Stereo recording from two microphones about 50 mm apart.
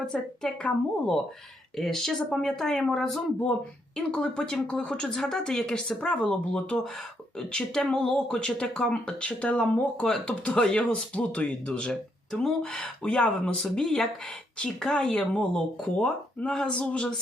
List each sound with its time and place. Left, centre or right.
0.0 s speech: centre
3.9 s speech: centre
13.8 s speech: centre
14.6 s speech: centre